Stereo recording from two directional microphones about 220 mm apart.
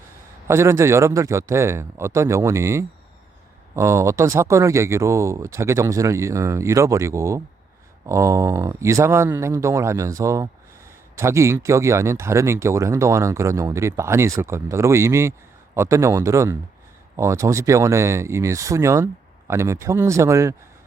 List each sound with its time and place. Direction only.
0.4 s speech: 10° right (ahead or behind)